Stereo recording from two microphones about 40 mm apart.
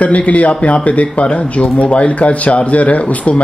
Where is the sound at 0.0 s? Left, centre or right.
Left.